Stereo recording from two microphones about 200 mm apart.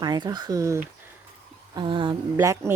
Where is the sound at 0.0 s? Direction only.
20° right (ahead or behind).